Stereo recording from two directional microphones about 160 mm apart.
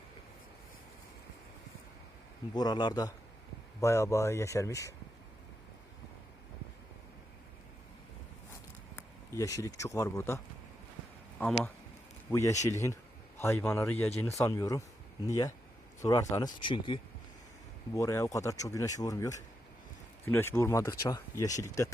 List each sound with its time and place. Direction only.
2.5 s speech: 25° left (ahead or behind)
9.0 s speech: 20° left (ahead or behind)
16.6 s speech: 30° left (ahead or behind)
17.9 s speech: 20° left (ahead or behind)